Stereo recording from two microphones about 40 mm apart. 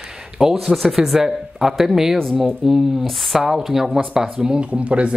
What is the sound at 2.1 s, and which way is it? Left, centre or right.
Speech, centre.